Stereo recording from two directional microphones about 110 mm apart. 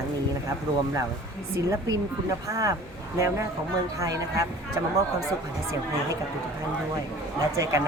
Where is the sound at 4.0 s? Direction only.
30° right (ahead or behind).